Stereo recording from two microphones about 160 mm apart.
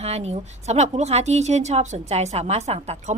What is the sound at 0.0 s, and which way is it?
A woman's voice, 40° right (ahead or behind).